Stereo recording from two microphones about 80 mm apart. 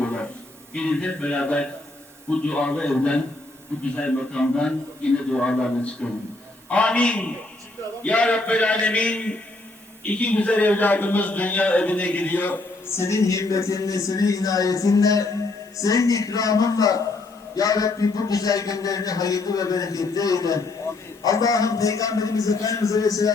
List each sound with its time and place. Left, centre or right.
0.0 s a sound: centre
0.7 s a man's voice: centre
13.0 s a man's voice: left